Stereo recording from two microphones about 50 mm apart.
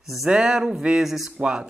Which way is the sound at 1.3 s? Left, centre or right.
Centre.